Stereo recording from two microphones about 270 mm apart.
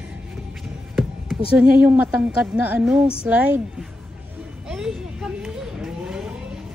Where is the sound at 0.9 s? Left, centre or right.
Centre.